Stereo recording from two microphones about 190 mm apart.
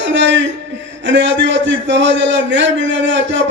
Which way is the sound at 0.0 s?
70° right (ahead or behind).